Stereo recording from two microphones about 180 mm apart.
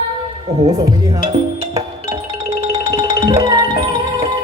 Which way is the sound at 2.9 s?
20° right (ahead or behind).